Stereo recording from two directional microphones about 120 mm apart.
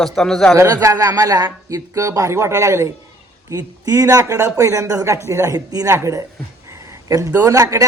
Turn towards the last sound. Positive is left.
turn(degrees=-25)  # may be behind; listen again after turning